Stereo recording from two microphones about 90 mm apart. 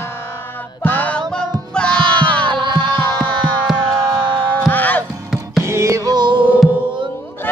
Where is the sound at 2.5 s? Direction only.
60° right (ahead or behind).